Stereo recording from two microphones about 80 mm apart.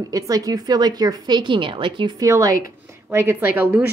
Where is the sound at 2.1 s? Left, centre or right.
Right.